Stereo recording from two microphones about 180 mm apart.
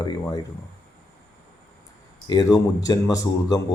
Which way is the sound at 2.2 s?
20° left (ahead or behind).